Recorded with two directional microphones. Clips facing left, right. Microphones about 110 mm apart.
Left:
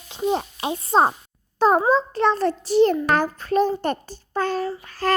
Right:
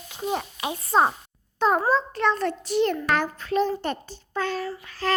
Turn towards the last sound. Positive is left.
turn(degrees=45)  # may be behind; listen again after turning